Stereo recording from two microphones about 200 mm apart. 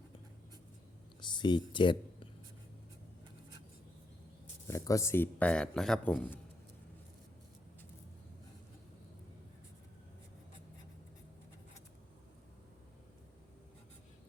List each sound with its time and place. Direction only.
1.2 s speech: 25° left (ahead or behind)
4.7 s speech: 15° left (ahead or behind)